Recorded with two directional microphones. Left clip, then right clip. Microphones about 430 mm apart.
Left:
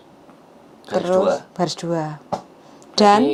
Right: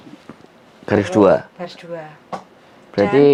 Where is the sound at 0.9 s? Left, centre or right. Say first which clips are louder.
Right 4 dB; right.